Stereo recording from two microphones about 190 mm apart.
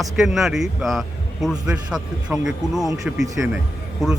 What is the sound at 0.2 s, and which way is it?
A man's voice, centre (ahead or behind).